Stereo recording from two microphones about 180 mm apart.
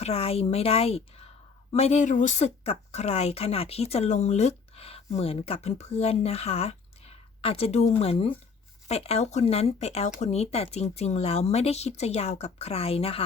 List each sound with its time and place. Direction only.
0.0 s speech: 35° left (ahead or behind)